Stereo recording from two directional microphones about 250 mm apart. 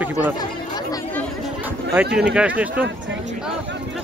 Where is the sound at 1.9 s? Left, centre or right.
Centre.